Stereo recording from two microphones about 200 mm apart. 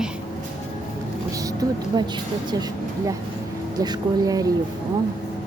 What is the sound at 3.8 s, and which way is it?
Speech, 20° right (ahead or behind).